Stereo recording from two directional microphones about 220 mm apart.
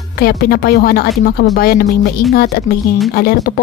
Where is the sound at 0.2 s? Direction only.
45° left (ahead or behind).